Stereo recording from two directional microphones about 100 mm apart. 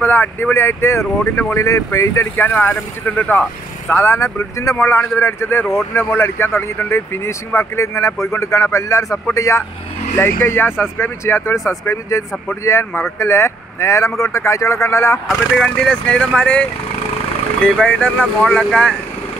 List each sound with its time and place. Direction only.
0.0 s speech: 20° left (ahead or behind)
2.3 s speech: 20° left (ahead or behind)
15.5 s speech: 10° left (ahead or behind)
17.6 s speech: 10° left (ahead or behind)